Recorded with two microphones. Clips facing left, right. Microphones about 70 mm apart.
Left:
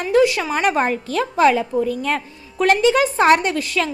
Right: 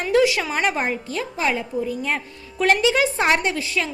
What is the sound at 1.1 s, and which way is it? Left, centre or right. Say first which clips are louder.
Speech: left 8 dB; left.